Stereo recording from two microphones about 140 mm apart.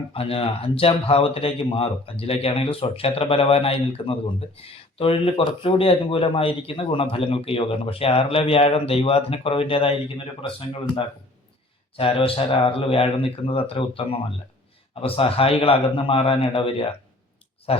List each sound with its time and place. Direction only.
0.1 s speech: 45° left (ahead or behind)